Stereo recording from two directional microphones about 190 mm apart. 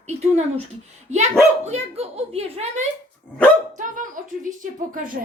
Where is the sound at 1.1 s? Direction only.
35° right (ahead or behind).